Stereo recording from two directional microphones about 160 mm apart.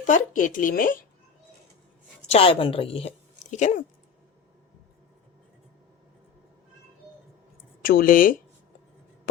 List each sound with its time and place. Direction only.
0.0 s speech: 55° left (ahead or behind)
2.3 s a woman's voice: 35° left (ahead or behind)
3.5 s speech: 50° left (ahead or behind)
7.8 s speech: 60° left (ahead or behind)